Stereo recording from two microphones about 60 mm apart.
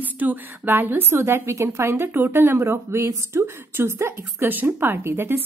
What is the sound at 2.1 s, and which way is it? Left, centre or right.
Speech, right.